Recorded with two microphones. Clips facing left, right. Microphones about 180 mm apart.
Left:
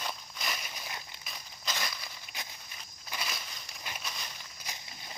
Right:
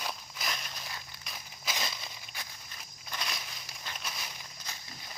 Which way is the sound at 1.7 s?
25° right (ahead or behind).